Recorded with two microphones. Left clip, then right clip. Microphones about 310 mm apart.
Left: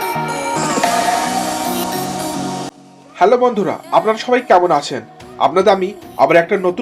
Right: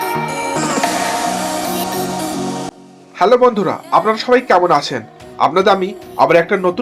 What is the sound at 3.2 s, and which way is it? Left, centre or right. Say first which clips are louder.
Speech: right 1 dB; right.